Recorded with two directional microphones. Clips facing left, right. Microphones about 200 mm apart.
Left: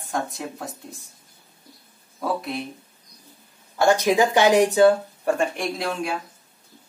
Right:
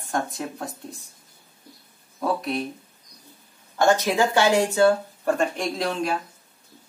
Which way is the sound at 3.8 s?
15° left (ahead or behind).